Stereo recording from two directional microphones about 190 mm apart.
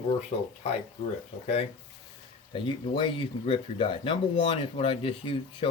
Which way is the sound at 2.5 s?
25° left (ahead or behind).